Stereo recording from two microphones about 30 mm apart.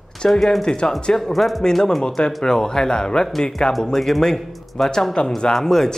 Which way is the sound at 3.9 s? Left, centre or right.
Centre.